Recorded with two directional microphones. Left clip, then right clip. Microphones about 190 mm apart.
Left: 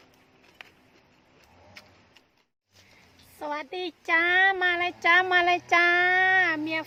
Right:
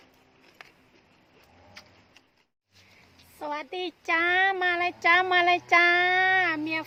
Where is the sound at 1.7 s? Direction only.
10° right (ahead or behind).